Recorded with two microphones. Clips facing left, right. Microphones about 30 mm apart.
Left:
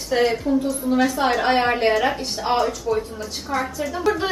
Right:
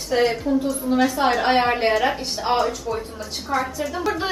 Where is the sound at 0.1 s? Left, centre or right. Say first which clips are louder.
Even; centre.